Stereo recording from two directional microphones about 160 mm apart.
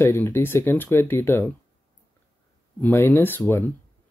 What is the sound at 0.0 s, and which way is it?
Speech, 15° left (ahead or behind).